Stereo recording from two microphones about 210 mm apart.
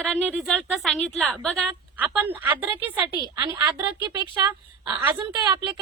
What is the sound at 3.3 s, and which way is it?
A woman's voice, 20° right (ahead or behind).